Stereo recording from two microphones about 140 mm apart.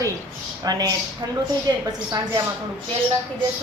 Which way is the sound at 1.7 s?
25° right (ahead or behind).